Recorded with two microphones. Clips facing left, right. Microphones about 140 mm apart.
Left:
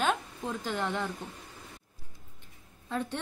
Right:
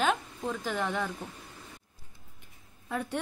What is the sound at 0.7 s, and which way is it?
Speech, 20° left (ahead or behind).